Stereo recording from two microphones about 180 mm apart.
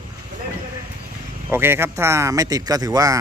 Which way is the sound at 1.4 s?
10° right (ahead or behind).